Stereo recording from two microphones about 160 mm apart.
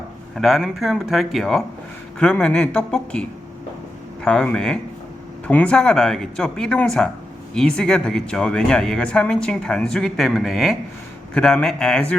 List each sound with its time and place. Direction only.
0.3 s speech: centre (ahead or behind)